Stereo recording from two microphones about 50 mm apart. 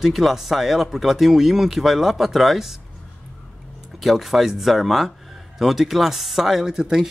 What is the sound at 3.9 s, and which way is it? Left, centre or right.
Speech, centre.